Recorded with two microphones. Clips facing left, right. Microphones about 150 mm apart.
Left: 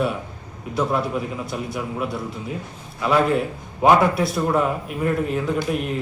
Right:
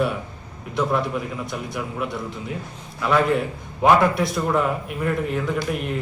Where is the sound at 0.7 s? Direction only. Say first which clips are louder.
Even; 5° left (ahead or behind).